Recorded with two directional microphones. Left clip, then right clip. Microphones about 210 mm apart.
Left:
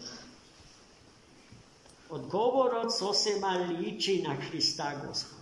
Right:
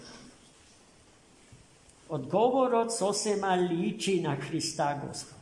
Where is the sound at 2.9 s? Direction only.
Centre (ahead or behind).